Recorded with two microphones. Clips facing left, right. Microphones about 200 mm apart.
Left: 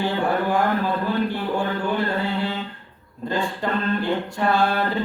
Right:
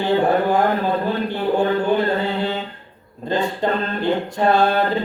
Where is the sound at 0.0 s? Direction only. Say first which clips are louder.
Right 5 dB; 20° right (ahead or behind).